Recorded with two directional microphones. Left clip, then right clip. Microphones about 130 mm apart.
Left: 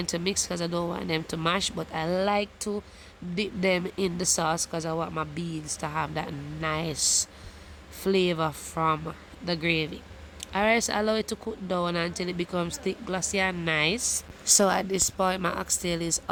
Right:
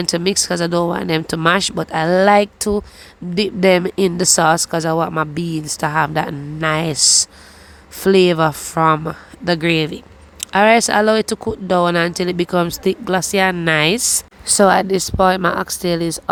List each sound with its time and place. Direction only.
0.0 s speech: 40° right (ahead or behind)